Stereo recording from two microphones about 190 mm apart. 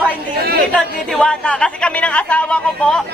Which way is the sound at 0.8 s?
5° left (ahead or behind).